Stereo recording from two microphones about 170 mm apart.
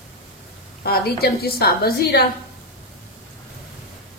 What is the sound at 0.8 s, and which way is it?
A woman's voice, 65° left (ahead or behind).